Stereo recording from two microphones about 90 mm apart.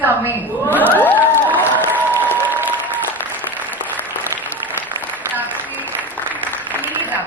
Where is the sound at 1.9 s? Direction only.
20° left (ahead or behind).